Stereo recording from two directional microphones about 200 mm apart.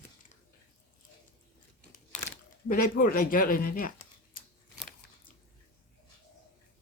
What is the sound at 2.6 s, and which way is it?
Speech, 45° left (ahead or behind).